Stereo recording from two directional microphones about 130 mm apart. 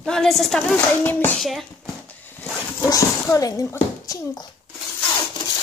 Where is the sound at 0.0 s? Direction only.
5° left (ahead or behind).